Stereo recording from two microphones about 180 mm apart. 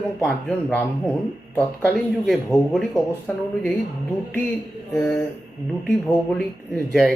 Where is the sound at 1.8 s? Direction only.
Centre (ahead or behind).